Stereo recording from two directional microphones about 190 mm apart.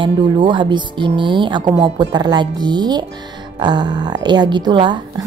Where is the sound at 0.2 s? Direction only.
25° right (ahead or behind).